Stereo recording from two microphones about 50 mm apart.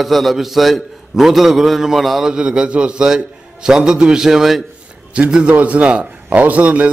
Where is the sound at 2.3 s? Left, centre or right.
Centre.